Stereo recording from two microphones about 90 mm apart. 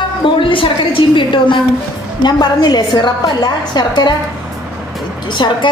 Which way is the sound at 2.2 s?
50° left (ahead or behind).